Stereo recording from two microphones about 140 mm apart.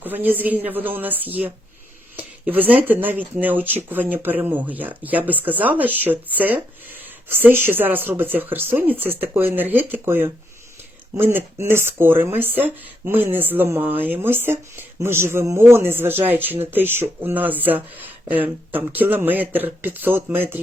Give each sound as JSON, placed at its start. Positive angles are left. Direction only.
{"t": 0.0, "sound": "speech", "side_deg": -15}